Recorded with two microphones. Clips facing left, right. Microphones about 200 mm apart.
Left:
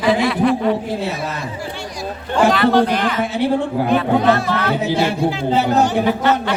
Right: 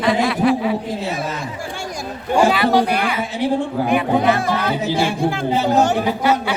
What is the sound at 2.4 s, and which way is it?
Speech, 10° right (ahead or behind).